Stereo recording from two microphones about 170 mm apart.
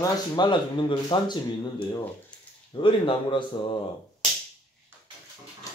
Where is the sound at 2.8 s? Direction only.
30° left (ahead or behind).